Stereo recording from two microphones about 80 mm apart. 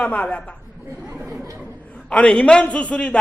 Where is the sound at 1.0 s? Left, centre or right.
Right.